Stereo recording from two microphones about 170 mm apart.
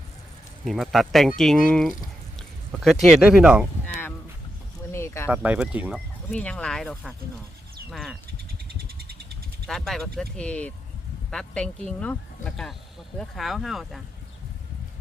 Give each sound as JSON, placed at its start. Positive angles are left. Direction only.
{"t": 0.6, "sound": "speech", "side_deg": 0}
{"t": 4.9, "sound": "a sound", "side_deg": 15}
{"t": 5.3, "sound": "speech", "side_deg": -10}
{"t": 6.3, "sound": "speech", "side_deg": 5}
{"t": 8.8, "sound": "a sound", "side_deg": -65}
{"t": 9.6, "sound": "speech", "side_deg": 0}